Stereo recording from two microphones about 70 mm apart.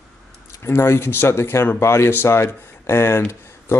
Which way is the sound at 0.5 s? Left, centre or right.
Left.